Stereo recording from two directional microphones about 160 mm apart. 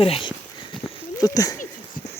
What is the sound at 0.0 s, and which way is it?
Speech, 35° left (ahead or behind).